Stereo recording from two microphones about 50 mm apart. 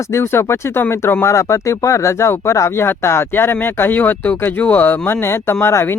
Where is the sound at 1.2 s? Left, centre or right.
Left.